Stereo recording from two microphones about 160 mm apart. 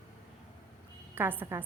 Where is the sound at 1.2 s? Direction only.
15° right (ahead or behind).